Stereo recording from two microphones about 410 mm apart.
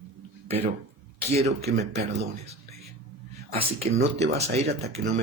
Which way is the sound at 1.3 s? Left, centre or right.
Centre.